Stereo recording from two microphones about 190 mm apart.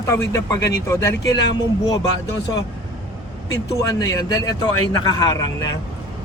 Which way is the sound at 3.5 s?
20° left (ahead or behind).